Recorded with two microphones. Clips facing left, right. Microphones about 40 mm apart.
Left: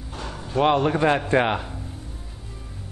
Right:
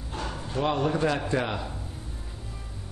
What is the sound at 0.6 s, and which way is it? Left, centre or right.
A man's voice, left.